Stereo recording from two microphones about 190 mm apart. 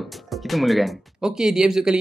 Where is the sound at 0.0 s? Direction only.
Centre (ahead or behind).